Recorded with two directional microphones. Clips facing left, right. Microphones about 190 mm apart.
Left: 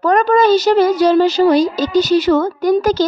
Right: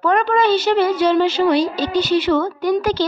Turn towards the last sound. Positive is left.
turn(degrees=40)  # may be behind; listen again after turning